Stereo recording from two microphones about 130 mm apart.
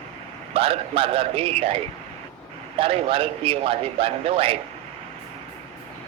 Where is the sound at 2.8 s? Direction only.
45° right (ahead or behind).